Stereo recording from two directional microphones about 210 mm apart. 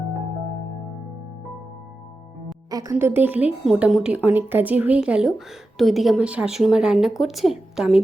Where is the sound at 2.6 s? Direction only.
15° right (ahead or behind).